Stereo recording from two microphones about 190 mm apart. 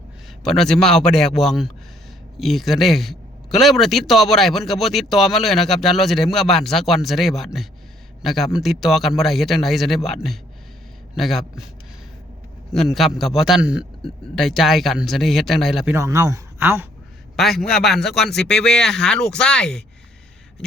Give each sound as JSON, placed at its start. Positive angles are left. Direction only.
{"t": 0.4, "sound": "a man's voice", "side_deg": 0}
{"t": 11.2, "sound": "a man's voice", "side_deg": 0}
{"t": 12.7, "sound": "a man's voice", "side_deg": 0}
{"t": 16.0, "sound": "a man's voice", "side_deg": -15}
{"t": 17.3, "sound": "a man's voice", "side_deg": 0}